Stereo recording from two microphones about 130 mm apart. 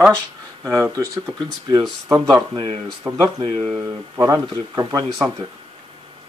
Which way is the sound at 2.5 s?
45° right (ahead or behind).